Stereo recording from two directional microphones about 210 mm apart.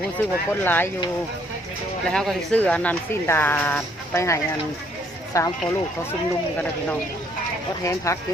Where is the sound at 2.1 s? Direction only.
Centre (ahead or behind).